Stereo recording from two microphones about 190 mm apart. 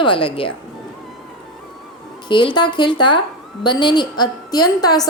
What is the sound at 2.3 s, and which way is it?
A woman's voice, 25° left (ahead or behind).